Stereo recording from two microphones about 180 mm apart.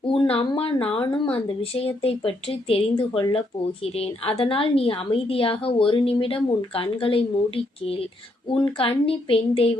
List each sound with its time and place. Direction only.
0.0 s a woman's voice: 30° left (ahead or behind)